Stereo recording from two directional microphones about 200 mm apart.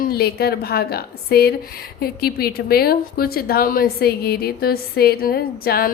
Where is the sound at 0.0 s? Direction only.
50° left (ahead or behind).